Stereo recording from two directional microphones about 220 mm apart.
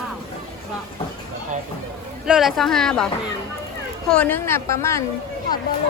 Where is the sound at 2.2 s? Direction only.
Centre (ahead or behind).